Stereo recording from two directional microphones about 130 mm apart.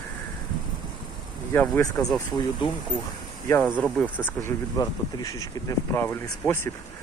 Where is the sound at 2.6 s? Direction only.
40° left (ahead or behind).